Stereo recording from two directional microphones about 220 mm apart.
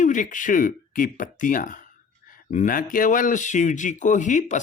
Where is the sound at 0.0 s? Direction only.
35° left (ahead or behind).